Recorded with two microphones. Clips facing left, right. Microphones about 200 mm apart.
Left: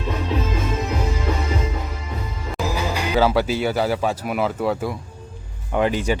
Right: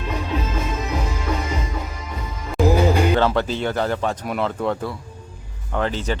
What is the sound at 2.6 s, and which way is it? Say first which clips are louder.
Music: right 9 dB; 55° right (ahead or behind).